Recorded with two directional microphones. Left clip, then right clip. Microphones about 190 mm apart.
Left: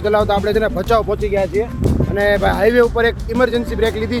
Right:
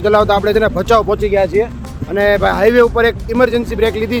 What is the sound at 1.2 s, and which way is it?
Speech, 15° right (ahead or behind).